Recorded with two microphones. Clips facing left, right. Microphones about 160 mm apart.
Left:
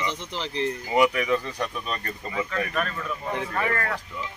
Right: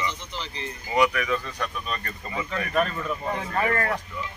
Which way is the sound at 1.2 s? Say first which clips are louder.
Left 2 dB; 25° left (ahead or behind).